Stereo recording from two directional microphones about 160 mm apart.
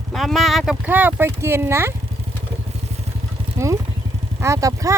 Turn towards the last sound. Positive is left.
turn(degrees=-20)  # may be behind; listen again after turning